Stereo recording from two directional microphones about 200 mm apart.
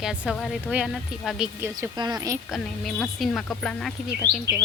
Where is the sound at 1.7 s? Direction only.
20° right (ahead or behind).